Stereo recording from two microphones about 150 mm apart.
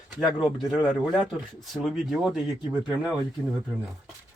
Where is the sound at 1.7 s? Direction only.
Centre (ahead or behind).